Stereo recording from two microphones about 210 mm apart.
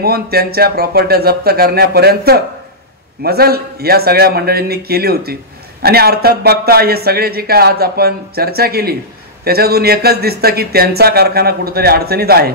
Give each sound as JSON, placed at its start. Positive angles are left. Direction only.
{"t": 0.0, "sound": "a man's voice", "side_deg": -50}